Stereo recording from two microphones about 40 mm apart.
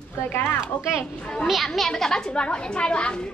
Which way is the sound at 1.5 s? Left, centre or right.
Centre.